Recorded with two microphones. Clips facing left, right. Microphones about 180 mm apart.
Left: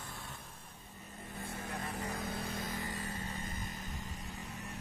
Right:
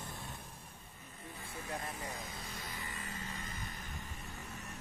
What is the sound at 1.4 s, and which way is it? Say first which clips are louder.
Vehicle: left 1 dB; 65° left (ahead or behind).